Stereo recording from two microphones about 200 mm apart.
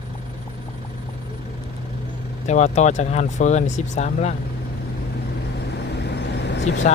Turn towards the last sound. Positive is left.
turn(degrees=65)  # may be behind; listen again after turning